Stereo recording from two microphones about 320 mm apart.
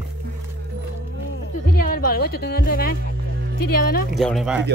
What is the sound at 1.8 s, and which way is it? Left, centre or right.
Music, left.